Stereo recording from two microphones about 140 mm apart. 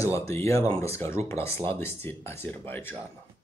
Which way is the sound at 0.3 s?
20° left (ahead or behind).